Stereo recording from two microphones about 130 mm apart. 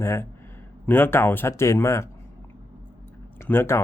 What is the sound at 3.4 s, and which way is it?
Speech, 20° left (ahead or behind).